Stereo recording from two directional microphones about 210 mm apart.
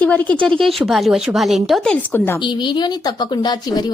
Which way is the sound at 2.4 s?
20° left (ahead or behind).